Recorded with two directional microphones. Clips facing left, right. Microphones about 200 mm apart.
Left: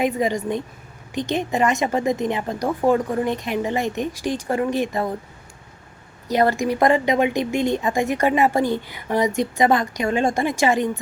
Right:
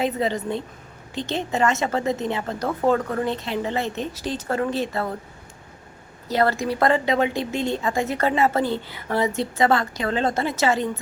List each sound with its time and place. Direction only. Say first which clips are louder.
0.0 s a woman's voice: left 2 dB; 15° left (ahead or behind)
6.2 s a woman's voice: left 2 dB; 15° left (ahead or behind)